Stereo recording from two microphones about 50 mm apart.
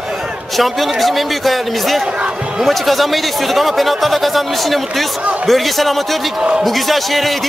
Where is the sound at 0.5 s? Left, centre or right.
Centre.